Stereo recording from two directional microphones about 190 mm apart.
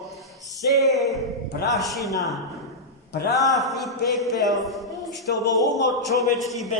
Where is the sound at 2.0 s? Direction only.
15° left (ahead or behind).